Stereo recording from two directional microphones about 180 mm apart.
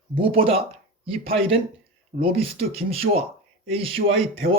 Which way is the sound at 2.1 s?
45° right (ahead or behind).